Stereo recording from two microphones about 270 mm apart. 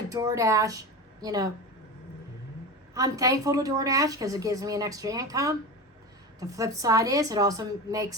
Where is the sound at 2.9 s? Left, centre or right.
Centre.